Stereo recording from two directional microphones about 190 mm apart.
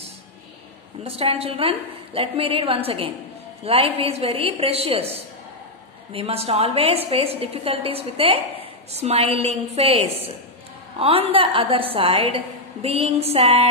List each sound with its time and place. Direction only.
1.0 s a woman's voice: 30° right (ahead or behind)
6.1 s a woman's voice: 30° right (ahead or behind)